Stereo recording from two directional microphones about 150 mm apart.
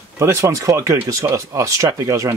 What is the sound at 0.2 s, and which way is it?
Speech, 20° right (ahead or behind).